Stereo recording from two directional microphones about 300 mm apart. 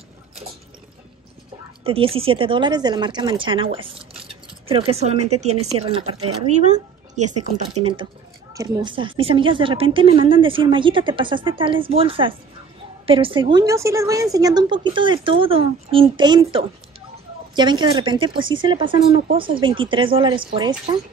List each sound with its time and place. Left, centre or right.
1.9 s speech: centre